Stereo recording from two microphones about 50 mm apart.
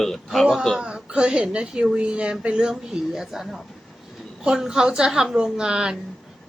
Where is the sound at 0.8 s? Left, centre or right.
Centre.